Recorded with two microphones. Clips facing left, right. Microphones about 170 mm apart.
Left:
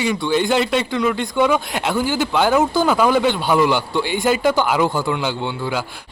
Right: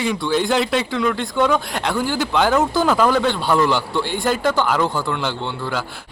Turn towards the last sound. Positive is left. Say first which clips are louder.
# left 2 dB
turn(degrees=10)  # may be behind; listen again after turning